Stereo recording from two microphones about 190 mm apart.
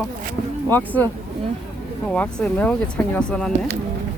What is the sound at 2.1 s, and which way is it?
Speech, 5° left (ahead or behind).